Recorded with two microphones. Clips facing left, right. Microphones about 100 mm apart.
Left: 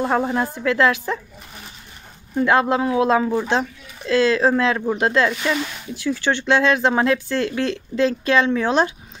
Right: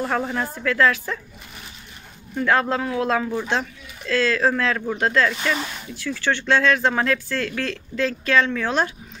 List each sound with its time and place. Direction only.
0.0 s speech: 25° left (ahead or behind)
2.3 s speech: 20° left (ahead or behind)